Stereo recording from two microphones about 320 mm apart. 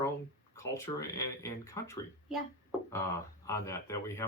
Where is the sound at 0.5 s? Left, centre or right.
Centre.